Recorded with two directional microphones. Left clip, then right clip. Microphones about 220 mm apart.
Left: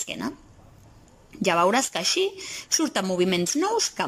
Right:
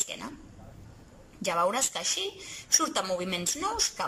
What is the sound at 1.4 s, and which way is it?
A woman's voice, 40° left (ahead or behind).